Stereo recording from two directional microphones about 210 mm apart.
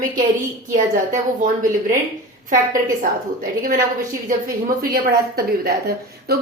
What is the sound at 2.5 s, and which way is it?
Speech, 40° right (ahead or behind).